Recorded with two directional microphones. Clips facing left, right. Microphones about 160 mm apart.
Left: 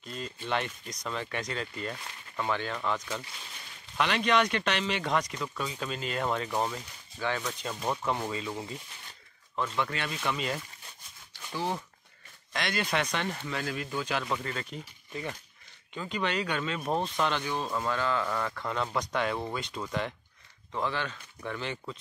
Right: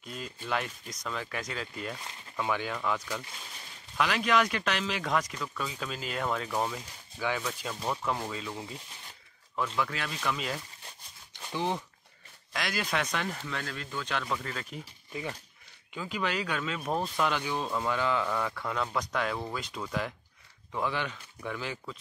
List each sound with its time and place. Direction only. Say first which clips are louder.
0.0 s speech: left 2 dB; 5° right (ahead or behind)
3.9 s speech: left 1 dB; centre (ahead or behind)
7.2 s speech: even; 5° right (ahead or behind)
11.3 s a sound: right 2 dB; 20° right (ahead or behind)
12.5 s speech: left 2 dB; centre (ahead or behind)
18.2 s speech: even; centre (ahead or behind)